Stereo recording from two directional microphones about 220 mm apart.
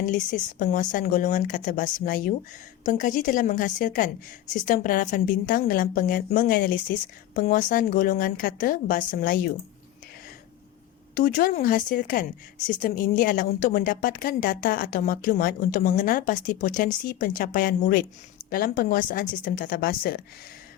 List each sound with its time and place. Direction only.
0.0 s a woman's voice: 35° left (ahead or behind)
11.1 s a woman's voice: 35° left (ahead or behind)